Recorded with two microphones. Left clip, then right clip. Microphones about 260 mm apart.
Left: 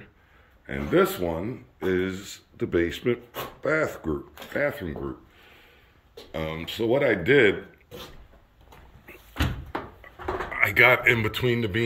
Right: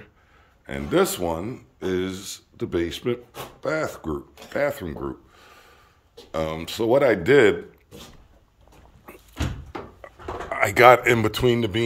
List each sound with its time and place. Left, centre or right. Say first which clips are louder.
0.7 s speech: right 1 dB; centre
5.4 s a sound: right 3 dB; centre
6.3 s speech: right 4 dB; centre
10.5 s speech: right 5 dB; centre